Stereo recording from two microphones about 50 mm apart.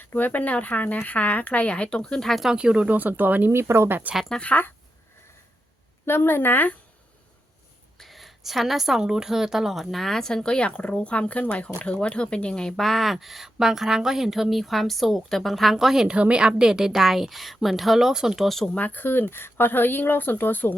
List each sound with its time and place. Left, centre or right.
0.0 s speech: left; by 2.4 s centre
2.6 s a woman's voice: right
2.9 s speech: right
3.5 s speech: right
4.4 s speech: left
6.1 s speech: left
7.9 s a woman's voice: centre
16.0 s a woman's voice: right
18.4 s a woman's voice: centre
18.8 s speech: left